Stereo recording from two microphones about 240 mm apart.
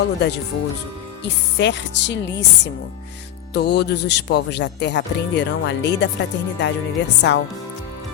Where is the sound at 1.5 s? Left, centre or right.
Left.